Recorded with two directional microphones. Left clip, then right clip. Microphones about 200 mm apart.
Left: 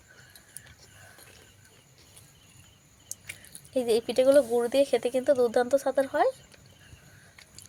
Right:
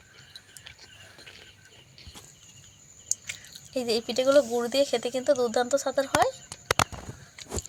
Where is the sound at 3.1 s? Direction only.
20° left (ahead or behind).